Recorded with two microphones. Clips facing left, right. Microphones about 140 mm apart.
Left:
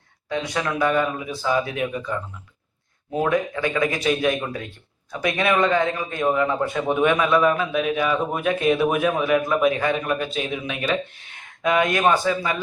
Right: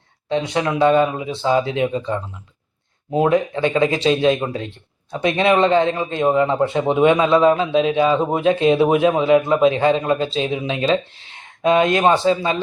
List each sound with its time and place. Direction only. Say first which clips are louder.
0.3 s speech: right 5 dB; 25° right (ahead or behind)